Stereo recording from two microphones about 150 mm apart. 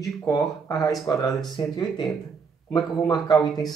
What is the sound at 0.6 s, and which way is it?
Speech, 20° left (ahead or behind).